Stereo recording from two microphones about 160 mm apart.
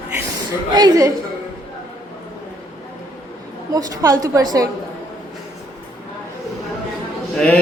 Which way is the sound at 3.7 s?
20° right (ahead or behind).